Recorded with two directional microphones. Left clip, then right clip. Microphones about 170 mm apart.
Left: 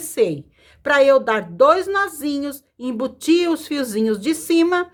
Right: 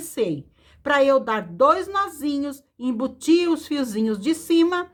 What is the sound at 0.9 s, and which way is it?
A woman's voice, 10° left (ahead or behind).